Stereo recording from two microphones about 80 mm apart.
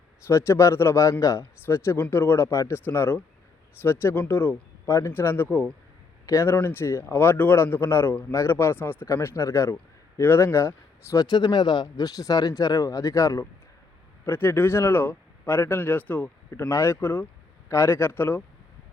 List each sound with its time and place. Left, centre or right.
0.3 s speech: left
4.9 s speech: left
6.2 s speech: left
6.5 s speech: left
11.3 s speech: left
14.3 s speech: left
16.5 s speech: left